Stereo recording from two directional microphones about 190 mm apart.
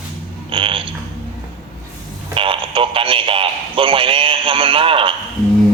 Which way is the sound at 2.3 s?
25° right (ahead or behind).